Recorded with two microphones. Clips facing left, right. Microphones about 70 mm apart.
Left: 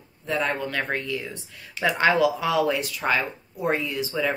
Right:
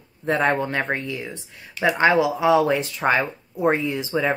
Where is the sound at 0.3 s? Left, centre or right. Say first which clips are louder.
Right 5 dB; right.